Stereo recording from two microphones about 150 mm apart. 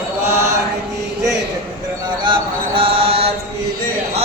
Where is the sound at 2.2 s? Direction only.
35° right (ahead or behind).